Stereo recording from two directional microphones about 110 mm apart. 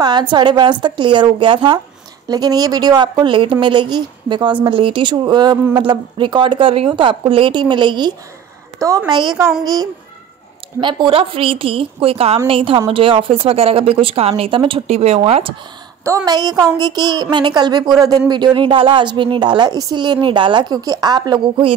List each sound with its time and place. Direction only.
0.0 s a woman's voice: 40° right (ahead or behind)
8.7 s a woman's voice: 30° right (ahead or behind); by 14.8 s 55° right (ahead or behind)
14.9 s speech: 75° right (ahead or behind)
16.0 s a woman's voice: 25° right (ahead or behind)